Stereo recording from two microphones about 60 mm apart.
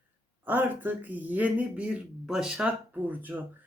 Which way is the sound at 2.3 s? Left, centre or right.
Centre.